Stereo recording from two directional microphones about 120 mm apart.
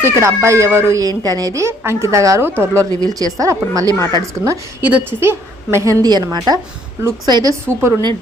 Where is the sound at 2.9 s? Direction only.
30° right (ahead or behind).